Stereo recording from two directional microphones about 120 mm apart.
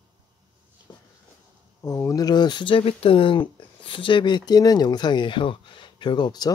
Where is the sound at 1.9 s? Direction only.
25° left (ahead or behind).